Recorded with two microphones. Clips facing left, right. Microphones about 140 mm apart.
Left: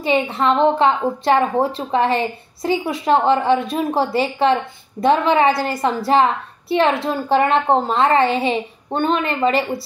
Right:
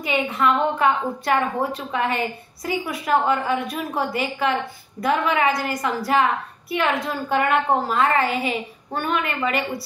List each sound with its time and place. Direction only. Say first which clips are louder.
0.0 s a woman's voice: left 4 dB; 30° left (ahead or behind)